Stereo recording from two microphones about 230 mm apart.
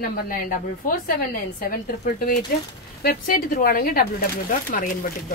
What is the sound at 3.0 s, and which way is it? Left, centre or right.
A woman's voice, left.